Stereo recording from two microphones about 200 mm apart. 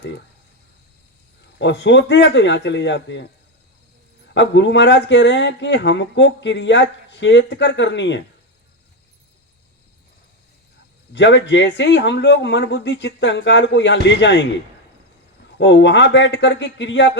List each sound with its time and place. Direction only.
1.5 s speech: 60° left (ahead or behind)
4.4 s speech: 60° left (ahead or behind)
11.1 s speech: 65° left (ahead or behind)
15.5 s speech: 60° left (ahead or behind)